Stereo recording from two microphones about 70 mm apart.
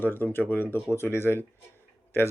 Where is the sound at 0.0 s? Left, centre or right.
Left.